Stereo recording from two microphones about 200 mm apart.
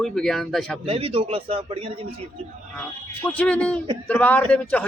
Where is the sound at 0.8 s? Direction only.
30° right (ahead or behind).